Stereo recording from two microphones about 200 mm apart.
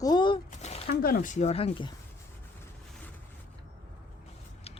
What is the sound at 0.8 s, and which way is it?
Speech, 50° left (ahead or behind).